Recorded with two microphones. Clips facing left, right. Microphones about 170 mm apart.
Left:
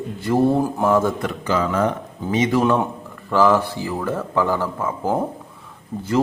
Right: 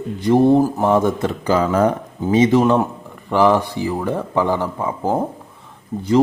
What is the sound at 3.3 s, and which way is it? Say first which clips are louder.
Speech: right 2 dB; 20° right (ahead or behind).